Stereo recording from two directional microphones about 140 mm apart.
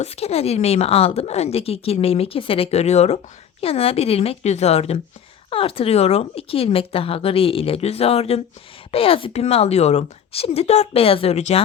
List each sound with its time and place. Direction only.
0.0 s speech: 45° left (ahead or behind)